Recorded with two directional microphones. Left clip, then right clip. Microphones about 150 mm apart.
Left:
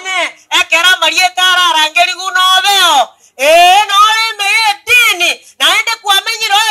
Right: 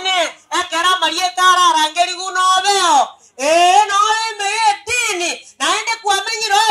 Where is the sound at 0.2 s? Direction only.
25° left (ahead or behind).